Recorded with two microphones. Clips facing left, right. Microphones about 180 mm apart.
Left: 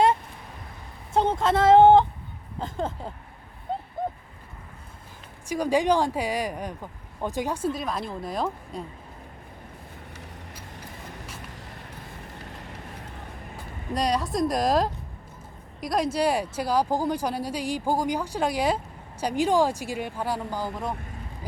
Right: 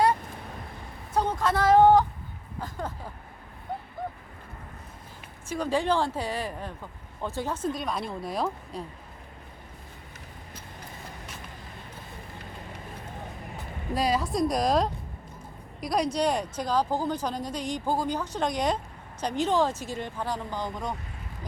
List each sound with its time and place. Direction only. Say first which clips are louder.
1.1 s speech: left 3 dB; 25° left (ahead or behind)
2.6 s a sound: left 5 dB; 25° left (ahead or behind)
5.5 s speech: left 4 dB; 15° left (ahead or behind)
7.7 s a woman's voice: left 1 dB; centre (ahead or behind)
13.9 s a woman's voice: left 1 dB; 5° right (ahead or behind)